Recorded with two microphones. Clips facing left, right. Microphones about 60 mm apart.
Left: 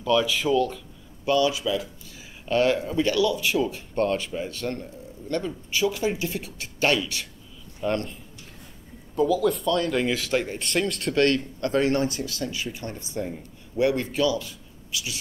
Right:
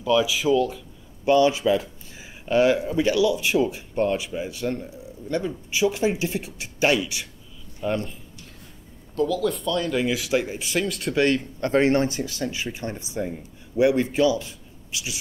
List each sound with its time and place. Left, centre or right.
0.0 s speech: centre
1.2 s speech: right
2.4 s speech: centre
9.1 s speech: centre
11.2 s speech: right